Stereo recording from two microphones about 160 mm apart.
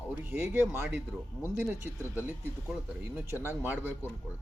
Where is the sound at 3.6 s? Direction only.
10° right (ahead or behind).